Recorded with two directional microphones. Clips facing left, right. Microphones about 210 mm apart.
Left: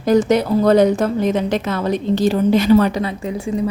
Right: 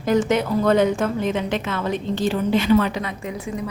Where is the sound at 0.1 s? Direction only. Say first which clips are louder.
Left 5 dB; 35° left (ahead or behind).